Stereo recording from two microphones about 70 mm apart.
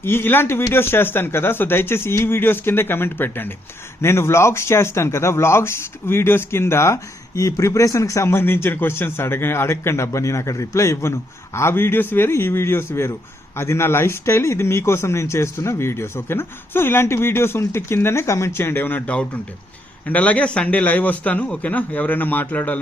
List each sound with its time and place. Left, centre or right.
0.0 s a man's voice: left